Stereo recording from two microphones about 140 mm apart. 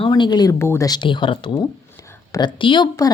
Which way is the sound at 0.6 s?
20° left (ahead or behind).